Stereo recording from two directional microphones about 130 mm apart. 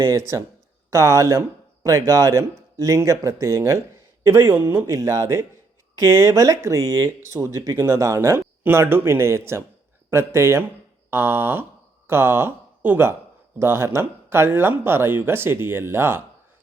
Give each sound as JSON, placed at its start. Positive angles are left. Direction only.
{"t": 0.0, "sound": "speech", "side_deg": -20}
{"t": 11.1, "sound": "a sound", "side_deg": -20}
{"t": 12.0, "sound": "speech", "side_deg": -20}